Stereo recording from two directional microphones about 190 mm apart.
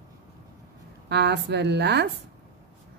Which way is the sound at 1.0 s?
65° right (ahead or behind).